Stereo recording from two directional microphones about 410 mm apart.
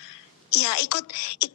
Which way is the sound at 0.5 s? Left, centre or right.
Left.